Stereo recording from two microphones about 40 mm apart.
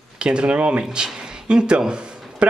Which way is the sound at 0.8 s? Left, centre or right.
Right.